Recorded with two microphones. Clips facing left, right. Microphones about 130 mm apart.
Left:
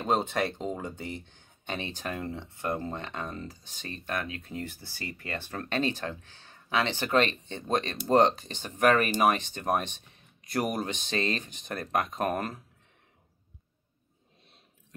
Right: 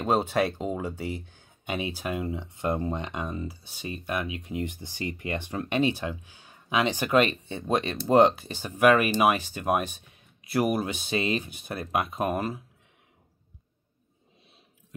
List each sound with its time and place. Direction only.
0.0 s speech: 10° right (ahead or behind)